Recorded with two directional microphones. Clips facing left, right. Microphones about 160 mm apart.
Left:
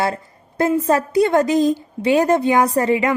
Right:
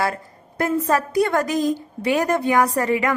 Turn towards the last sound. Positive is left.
turn(degrees=25)  # may be behind; listen again after turning